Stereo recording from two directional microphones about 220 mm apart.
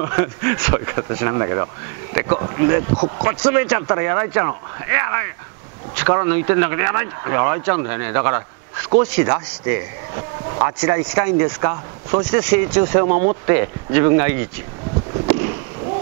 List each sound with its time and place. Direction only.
0.0 s speech: 15° right (ahead or behind)
3.4 s speech: 10° right (ahead or behind)
10.6 s speech: 20° right (ahead or behind)
13.1 s speech: 40° right (ahead or behind)
13.5 s speech: 10° right (ahead or behind)
15.2 s a sound: 10° right (ahead or behind)